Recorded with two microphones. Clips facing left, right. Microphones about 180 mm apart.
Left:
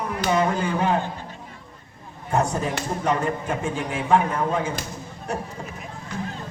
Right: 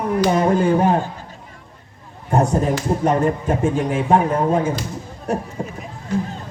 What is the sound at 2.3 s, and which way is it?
Speech, 50° right (ahead or behind).